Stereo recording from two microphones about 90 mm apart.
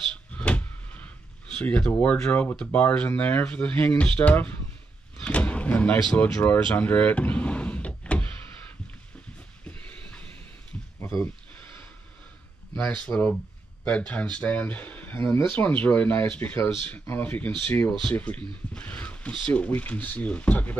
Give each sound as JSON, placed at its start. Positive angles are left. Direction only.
{"t": 0.3, "sound": "a sound", "side_deg": 15}
{"t": 1.6, "sound": "speech", "side_deg": 15}
{"t": 5.2, "sound": "vehicle", "side_deg": 15}
{"t": 6.1, "sound": "speech", "side_deg": 15}
{"t": 9.7, "sound": "train", "side_deg": 15}
{"t": 12.7, "sound": "speech", "side_deg": 15}